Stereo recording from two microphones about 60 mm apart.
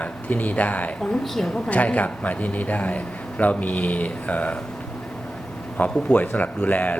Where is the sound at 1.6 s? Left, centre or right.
Left.